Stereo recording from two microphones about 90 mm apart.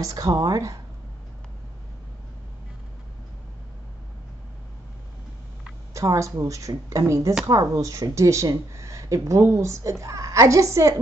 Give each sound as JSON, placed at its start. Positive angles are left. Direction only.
{"t": 0.0, "sound": "speech", "side_deg": -40}
{"t": 5.9, "sound": "speech", "side_deg": -35}